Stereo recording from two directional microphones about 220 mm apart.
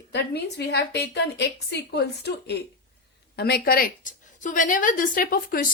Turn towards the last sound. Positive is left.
turn(degrees=40)  # may be behind; listen again after turning